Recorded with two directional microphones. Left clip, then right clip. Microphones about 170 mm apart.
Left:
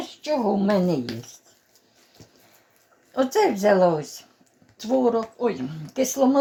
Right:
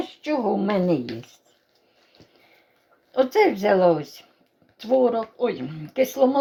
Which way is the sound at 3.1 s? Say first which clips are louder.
Right 2 dB; 25° right (ahead or behind).